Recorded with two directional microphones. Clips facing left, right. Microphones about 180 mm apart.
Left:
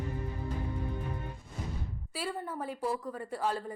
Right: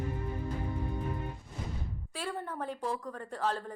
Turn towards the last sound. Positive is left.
turn(degrees=10)  # may be behind; listen again after turning